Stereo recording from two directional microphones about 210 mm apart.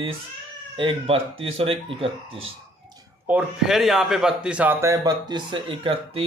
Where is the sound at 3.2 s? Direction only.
5° right (ahead or behind).